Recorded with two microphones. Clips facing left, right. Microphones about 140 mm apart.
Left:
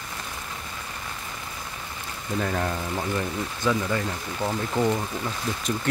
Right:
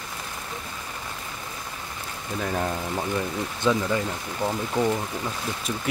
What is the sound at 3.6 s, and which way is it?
Speech, 25° right (ahead or behind).